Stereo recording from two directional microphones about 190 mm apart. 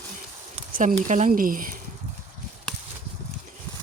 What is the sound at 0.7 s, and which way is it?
Speech, 45° right (ahead or behind).